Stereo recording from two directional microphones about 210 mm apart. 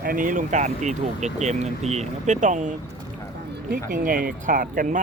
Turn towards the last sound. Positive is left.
turn(degrees=-40)  # may be behind; listen again after turning